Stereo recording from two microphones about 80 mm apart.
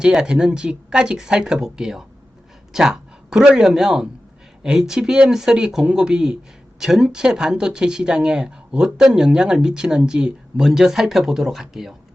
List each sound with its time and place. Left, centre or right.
0.0 s speech: centre